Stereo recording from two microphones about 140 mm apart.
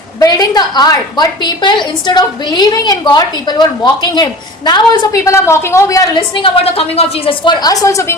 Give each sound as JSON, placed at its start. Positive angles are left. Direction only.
{"t": 0.2, "sound": "a woman's voice", "side_deg": 25}
{"t": 6.1, "sound": "a woman's voice", "side_deg": 35}
{"t": 7.6, "sound": "a woman's voice", "side_deg": 25}